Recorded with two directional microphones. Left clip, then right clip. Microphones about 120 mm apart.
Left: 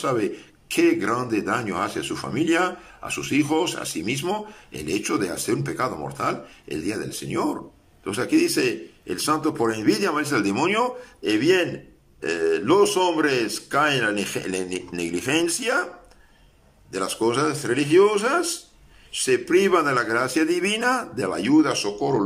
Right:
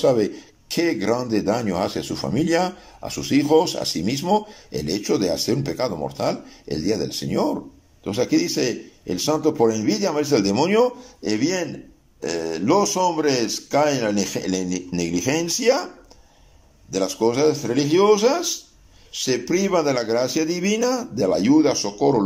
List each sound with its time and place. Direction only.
0.0 s speech: 40° right (ahead or behind)
16.9 s speech: 40° right (ahead or behind)